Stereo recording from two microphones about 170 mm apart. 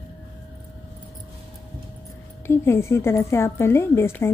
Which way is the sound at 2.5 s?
15° left (ahead or behind).